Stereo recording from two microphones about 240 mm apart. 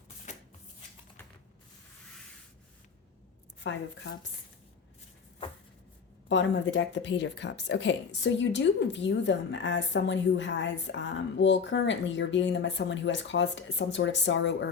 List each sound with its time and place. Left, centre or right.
0.3 s shuffling cards: left
3.6 s a woman's voice: left
6.2 s a woman's voice: left